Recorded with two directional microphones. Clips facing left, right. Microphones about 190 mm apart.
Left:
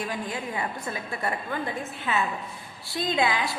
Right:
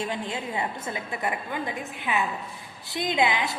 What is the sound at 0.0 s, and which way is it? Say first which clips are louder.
A woman's voice: right 1 dB; 25° right (ahead or behind).